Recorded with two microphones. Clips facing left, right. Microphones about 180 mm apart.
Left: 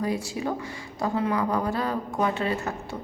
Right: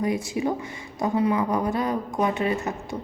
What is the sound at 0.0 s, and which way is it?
A woman's voice, 20° right (ahead or behind).